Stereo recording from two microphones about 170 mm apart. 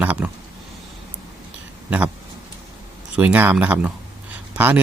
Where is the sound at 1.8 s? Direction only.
10° right (ahead or behind).